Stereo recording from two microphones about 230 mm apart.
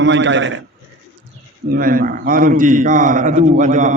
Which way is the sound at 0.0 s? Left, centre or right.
Right.